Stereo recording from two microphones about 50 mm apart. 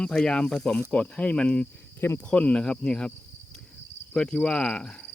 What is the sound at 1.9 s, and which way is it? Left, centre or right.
Speech, left.